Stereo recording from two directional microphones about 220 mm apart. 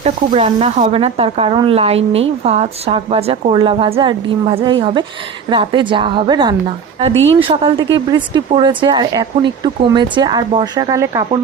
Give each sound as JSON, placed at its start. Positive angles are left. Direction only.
{"t": 0.0, "sound": "a woman's voice", "side_deg": -25}